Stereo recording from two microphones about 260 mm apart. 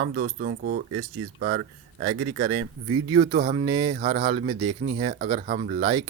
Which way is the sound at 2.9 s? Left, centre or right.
Centre.